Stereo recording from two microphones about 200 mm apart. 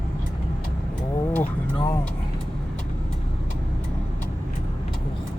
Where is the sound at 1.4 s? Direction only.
25° left (ahead or behind).